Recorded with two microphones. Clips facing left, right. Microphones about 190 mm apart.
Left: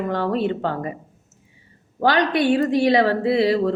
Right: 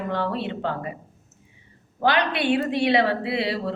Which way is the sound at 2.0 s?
45° left (ahead or behind).